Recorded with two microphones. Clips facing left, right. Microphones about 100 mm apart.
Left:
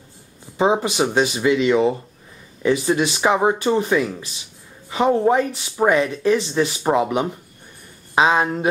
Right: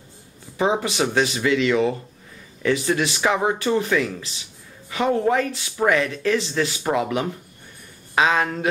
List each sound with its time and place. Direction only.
0.6 s speech: 20° left (ahead or behind)